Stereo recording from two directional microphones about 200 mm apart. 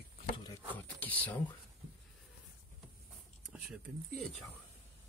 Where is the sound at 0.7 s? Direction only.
10° left (ahead or behind).